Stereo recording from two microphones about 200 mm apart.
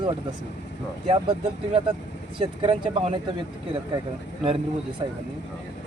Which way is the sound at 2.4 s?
25° right (ahead or behind).